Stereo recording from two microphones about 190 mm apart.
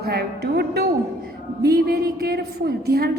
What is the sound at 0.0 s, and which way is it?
A woman's voice, 55° right (ahead or behind).